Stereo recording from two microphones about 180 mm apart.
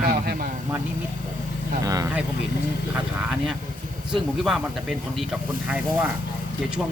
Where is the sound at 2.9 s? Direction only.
5° right (ahead or behind).